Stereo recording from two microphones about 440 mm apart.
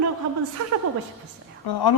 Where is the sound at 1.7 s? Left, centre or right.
Left.